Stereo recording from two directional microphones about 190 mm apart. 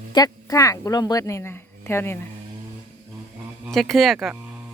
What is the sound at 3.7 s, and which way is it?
Speech, centre (ahead or behind).